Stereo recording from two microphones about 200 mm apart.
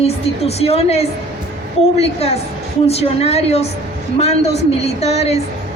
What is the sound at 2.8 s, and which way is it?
Speech, 30° left (ahead or behind).